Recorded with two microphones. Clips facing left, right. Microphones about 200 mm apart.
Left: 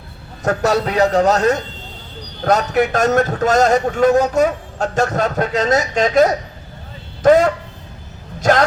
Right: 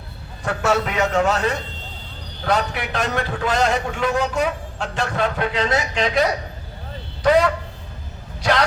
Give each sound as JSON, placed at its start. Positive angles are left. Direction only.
{"t": 0.4, "sound": "a man's voice", "side_deg": 40}